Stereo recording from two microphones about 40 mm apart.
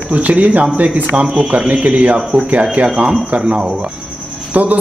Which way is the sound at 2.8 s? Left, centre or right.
Right.